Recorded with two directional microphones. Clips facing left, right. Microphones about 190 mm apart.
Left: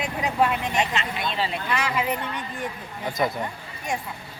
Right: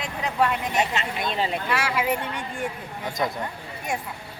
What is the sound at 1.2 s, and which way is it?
Speech, 45° right (ahead or behind).